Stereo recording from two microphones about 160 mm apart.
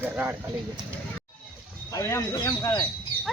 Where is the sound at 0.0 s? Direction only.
15° right (ahead or behind).